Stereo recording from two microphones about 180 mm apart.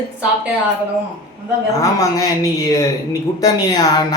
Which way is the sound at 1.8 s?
20° left (ahead or behind).